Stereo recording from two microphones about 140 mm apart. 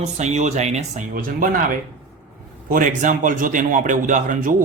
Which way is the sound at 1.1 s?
80° right.